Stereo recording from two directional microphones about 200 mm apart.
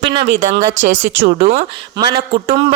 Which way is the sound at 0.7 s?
35° right (ahead or behind).